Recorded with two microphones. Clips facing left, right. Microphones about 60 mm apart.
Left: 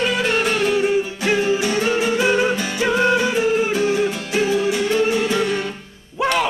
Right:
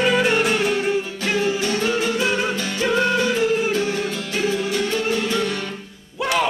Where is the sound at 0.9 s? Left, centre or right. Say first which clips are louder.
Left 3 dB; centre.